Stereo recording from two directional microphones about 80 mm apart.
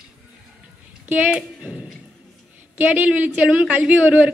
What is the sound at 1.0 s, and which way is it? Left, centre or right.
Speech, centre.